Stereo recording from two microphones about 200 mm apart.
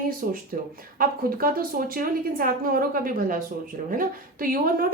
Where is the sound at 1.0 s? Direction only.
45° right (ahead or behind).